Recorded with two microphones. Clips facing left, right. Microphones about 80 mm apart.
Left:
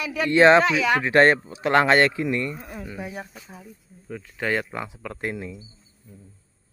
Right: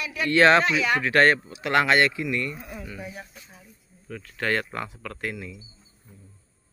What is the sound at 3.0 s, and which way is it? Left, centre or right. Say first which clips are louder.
Speech: left 4 dB; left.